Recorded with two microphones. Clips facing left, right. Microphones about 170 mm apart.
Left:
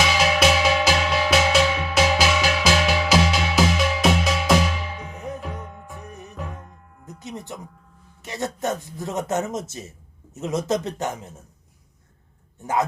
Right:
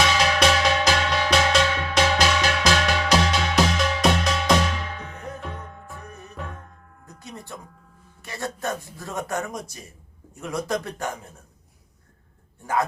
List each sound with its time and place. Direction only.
0.0 s music: 5° left (ahead or behind)
5.4 s music: 5° left (ahead or behind)
5.9 s music: 20° left (ahead or behind)
6.3 s music: centre (ahead or behind)
6.6 s music: 20° left (ahead or behind)
8.2 s speech: 20° left (ahead or behind)